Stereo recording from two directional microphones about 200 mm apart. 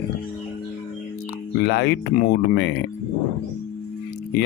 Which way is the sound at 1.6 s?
55° left (ahead or behind).